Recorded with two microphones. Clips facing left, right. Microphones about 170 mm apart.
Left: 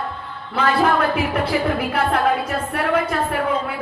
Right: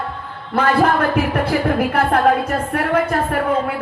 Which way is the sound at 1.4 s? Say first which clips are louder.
Right 3 dB; 50° right (ahead or behind).